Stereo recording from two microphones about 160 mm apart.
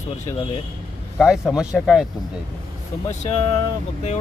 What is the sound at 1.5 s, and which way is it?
Speech, centre (ahead or behind).